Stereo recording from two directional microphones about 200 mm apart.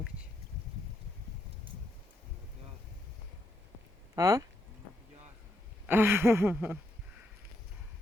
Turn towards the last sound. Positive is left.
turn(degrees=-5)  # may be behind; listen again after turning